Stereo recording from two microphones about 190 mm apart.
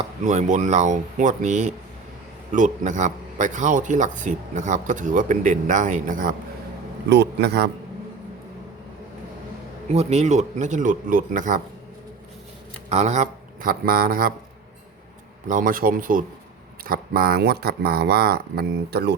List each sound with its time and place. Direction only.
0.0 s a man's voice: 40° right (ahead or behind)
7.1 s speech: 60° right (ahead or behind)
9.9 s a man's voice: 35° right (ahead or behind)
12.9 s speech: 35° right (ahead or behind)
15.4 s speech: 45° right (ahead or behind)